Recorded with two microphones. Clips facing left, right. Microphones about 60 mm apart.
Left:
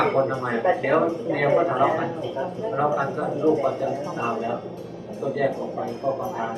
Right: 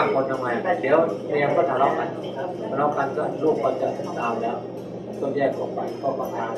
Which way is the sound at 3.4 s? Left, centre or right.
Left.